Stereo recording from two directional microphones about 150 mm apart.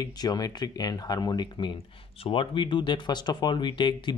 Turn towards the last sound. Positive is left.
turn(degrees=30)  # may be behind; listen again after turning